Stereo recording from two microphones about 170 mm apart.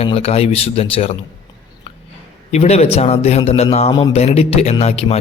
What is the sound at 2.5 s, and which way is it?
Speech, 40° left (ahead or behind).